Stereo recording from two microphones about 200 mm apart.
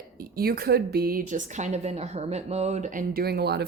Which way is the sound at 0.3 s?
50° right (ahead or behind).